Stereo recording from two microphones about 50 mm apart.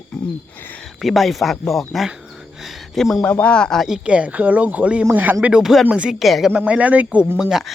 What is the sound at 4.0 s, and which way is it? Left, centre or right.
Speech, right.